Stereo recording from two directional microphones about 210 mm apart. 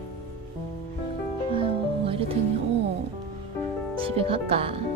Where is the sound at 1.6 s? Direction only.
25° right (ahead or behind).